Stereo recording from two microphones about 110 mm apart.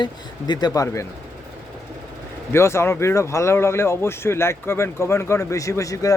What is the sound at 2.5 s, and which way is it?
Speech, 25° left (ahead or behind).